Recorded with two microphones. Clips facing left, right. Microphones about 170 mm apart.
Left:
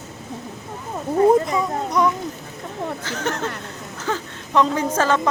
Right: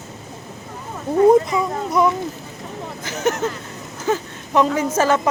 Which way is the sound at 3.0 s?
10° right (ahead or behind).